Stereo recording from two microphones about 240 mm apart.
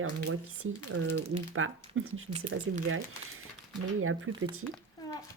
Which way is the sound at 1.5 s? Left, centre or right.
Right.